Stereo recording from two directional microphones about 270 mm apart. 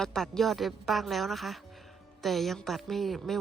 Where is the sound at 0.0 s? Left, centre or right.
Centre.